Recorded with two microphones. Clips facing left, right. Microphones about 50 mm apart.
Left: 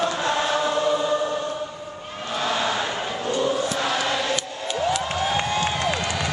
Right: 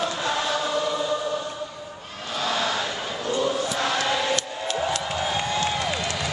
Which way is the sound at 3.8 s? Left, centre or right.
Centre.